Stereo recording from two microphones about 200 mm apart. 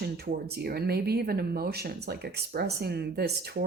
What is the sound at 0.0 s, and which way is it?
Speech, 50° right (ahead or behind).